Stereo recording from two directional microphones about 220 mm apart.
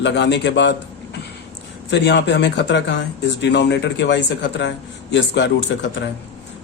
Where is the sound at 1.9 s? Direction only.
55° left (ahead or behind).